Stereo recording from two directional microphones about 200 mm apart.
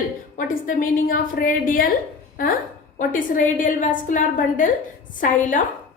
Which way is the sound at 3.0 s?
40° left (ahead or behind).